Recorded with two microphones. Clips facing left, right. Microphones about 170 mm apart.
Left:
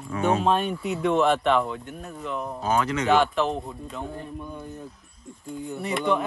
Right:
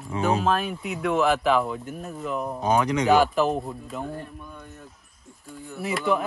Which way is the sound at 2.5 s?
15° right (ahead or behind).